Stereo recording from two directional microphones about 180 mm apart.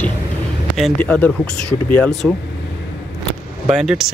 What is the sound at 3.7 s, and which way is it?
Speech, centre (ahead or behind).